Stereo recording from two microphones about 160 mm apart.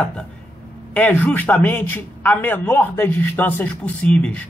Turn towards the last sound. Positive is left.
turn(degrees=10)  # may be behind; listen again after turning